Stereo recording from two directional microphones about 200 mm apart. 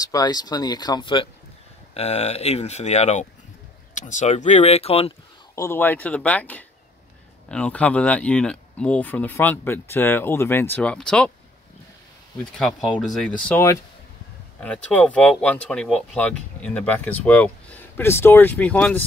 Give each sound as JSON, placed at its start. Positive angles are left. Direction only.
{"t": 0.0, "sound": "speech", "side_deg": 20}
{"t": 5.6, "sound": "speech", "side_deg": 10}
{"t": 12.5, "sound": "speech", "side_deg": 0}